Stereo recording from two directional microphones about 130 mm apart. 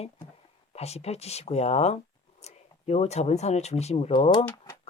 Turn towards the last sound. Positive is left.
turn(degrees=40)  # may be behind; listen again after turning